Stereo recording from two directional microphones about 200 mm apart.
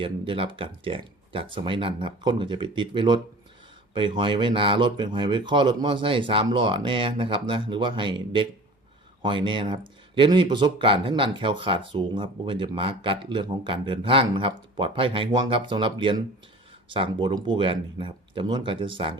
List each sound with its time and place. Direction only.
0.0 s speech: 25° right (ahead or behind)